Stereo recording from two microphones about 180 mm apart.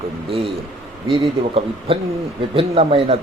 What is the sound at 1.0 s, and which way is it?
Speech, 30° right (ahead or behind).